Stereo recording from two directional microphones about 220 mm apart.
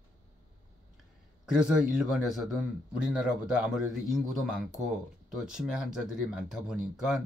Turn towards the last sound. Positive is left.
turn(degrees=0)  # may be behind; listen again after turning